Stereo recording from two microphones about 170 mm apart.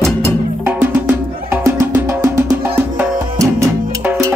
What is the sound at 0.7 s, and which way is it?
Music, 10° right (ahead or behind).